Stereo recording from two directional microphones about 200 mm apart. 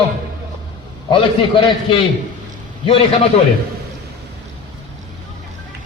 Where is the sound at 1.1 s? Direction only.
25° left (ahead or behind).